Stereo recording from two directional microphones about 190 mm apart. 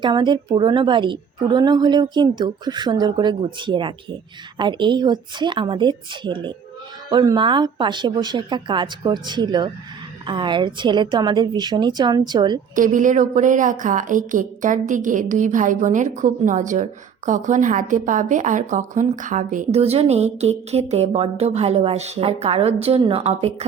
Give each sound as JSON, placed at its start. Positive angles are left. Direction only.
{"t": 0.0, "sound": "a woman's voice", "side_deg": -25}
{"t": 12.7, "sound": "a woman's voice", "side_deg": -45}